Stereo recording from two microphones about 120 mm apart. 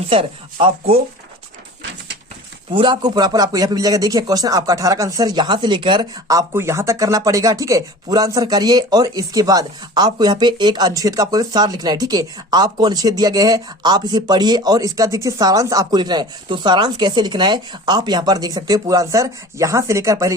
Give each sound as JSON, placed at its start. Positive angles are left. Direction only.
{"t": 0.1, "sound": "speech", "side_deg": -50}
{"t": 2.7, "sound": "speech", "side_deg": -40}